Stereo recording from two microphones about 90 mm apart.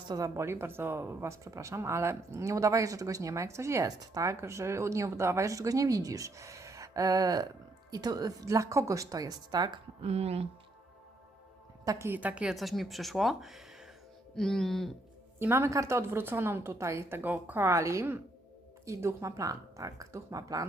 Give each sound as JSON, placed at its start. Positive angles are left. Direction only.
{"t": 0.3, "sound": "speech", "side_deg": -30}
{"t": 11.9, "sound": "a woman's voice", "side_deg": -30}
{"t": 12.5, "sound": "speech", "side_deg": 0}
{"t": 15.4, "sound": "a woman's voice", "side_deg": -30}